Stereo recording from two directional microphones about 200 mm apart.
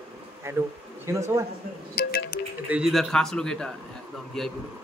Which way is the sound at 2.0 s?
50° left (ahead or behind).